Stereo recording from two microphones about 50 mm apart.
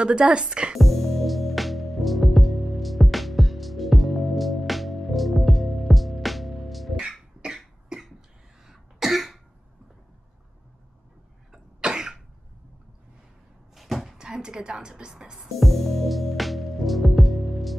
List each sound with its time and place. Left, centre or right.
0.0 s speech: right
0.7 s music: centre
7.0 s cough: centre
11.5 s cough: centre
13.7 s a sound: centre
14.1 s a woman's voice: centre
15.5 s music: centre